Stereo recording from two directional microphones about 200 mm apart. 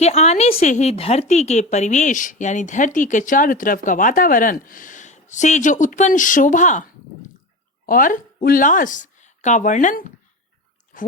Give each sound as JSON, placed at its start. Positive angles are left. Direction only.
{"t": 0.0, "sound": "a woman's voice", "side_deg": 35}
{"t": 7.9, "sound": "a woman's voice", "side_deg": 45}